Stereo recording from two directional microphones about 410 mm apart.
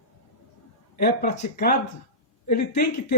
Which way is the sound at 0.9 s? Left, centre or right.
Left.